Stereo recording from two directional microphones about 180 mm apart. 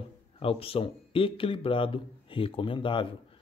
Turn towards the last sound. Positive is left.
turn(degrees=30)  # may be behind; listen again after turning